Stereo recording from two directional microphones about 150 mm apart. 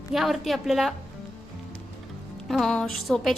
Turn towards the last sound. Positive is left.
turn(degrees=0)  # may be behind; listen again after turning